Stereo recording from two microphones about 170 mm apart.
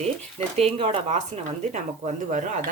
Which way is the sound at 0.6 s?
35° right (ahead or behind).